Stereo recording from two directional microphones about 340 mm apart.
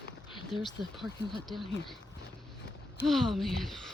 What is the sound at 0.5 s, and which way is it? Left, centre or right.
Speech, centre.